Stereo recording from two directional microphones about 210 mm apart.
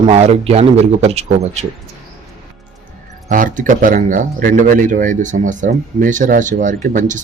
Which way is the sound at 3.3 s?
40° right (ahead or behind).